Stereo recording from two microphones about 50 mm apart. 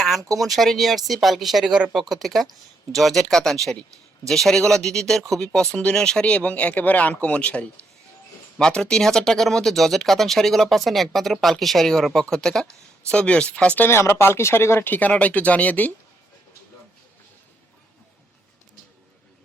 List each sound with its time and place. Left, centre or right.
0.0 s speech: centre
5.7 s speech: centre
6.3 s speech: left; by 12.6 s centre
13.1 s speech: left
13.7 s speech: left
14.8 s speech: left